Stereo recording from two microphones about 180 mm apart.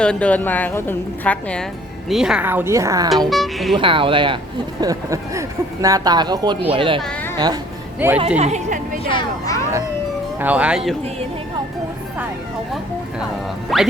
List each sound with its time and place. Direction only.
0.0 s a woman's voice: 5° left (ahead or behind); by 3.1 s 20° right (ahead or behind)
3.2 s speech: centre (ahead or behind)
3.8 s a woman's voice: 30° right (ahead or behind)
7.0 s a sound: 5° left (ahead or behind)
7.3 s a woman's voice: 25° right (ahead or behind)
7.9 s a woman's voice: 10° right (ahead or behind)
8.4 s a woman's voice: 40° right (ahead or behind)
9.0 s speech: 25° left (ahead or behind)
10.4 s a woman's voice: 5° right (ahead or behind)
13.7 s speech: centre (ahead or behind)